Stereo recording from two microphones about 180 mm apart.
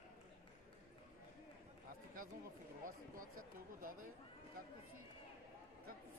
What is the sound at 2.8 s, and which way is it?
Speech, 50° right (ahead or behind).